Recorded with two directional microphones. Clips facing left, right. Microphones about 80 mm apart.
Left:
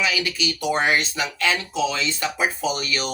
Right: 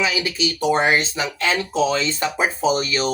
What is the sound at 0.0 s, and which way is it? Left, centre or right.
Speech, right.